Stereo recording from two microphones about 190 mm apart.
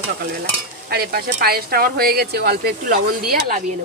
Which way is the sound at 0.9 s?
55° right (ahead or behind).